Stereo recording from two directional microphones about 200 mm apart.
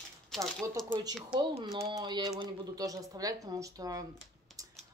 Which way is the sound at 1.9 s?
20° right (ahead or behind).